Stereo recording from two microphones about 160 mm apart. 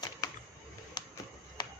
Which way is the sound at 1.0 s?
30° left (ahead or behind).